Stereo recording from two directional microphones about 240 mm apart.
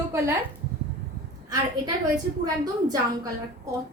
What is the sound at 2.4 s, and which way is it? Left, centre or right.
Speech, centre.